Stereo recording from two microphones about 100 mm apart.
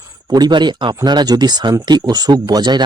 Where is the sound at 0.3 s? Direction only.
45° right (ahead or behind).